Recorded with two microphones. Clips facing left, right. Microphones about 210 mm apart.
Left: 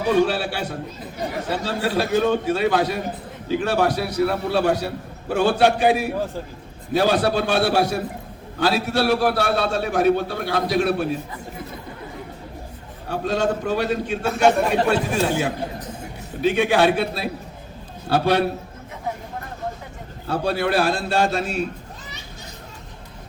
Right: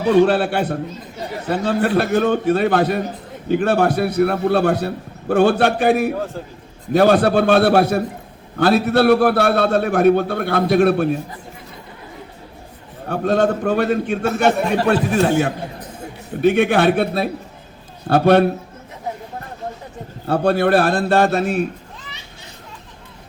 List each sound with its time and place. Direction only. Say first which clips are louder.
0.3 s a man's voice: right 7 dB; 55° right (ahead or behind)
13.1 s a man's voice: right 5 dB; 55° right (ahead or behind)
20.2 s a man's voice: right 6 dB; 55° right (ahead or behind)